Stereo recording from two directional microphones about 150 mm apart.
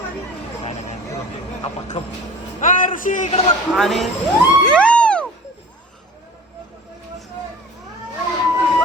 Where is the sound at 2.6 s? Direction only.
65° left (ahead or behind).